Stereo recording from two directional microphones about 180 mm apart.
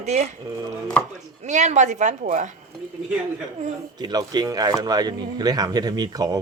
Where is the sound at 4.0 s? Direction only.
20° right (ahead or behind).